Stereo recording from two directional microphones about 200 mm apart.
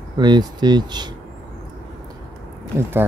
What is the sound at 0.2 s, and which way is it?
Speech, 20° right (ahead or behind).